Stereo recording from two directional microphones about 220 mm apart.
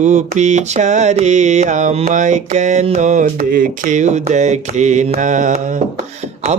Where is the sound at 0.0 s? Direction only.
30° right (ahead or behind).